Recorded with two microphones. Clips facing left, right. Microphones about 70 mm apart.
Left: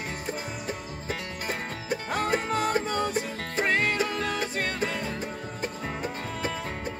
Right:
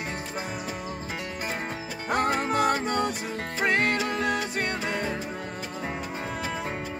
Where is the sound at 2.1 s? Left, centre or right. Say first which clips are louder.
Right 3 dB; right.